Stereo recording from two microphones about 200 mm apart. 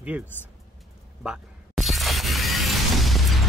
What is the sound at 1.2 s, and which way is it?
Music, centre (ahead or behind).